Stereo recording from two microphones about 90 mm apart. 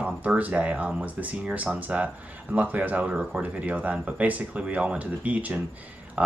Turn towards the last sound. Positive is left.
turn(degrees=-15)  # may be behind; listen again after turning